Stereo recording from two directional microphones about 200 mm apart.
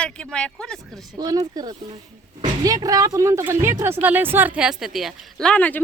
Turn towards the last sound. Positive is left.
turn(degrees=5)  # may be behind; listen again after turning